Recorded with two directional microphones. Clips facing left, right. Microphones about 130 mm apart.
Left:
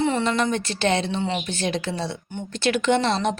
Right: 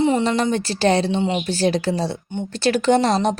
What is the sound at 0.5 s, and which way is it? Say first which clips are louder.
A woman's voice: right 4 dB; 35° right (ahead or behind).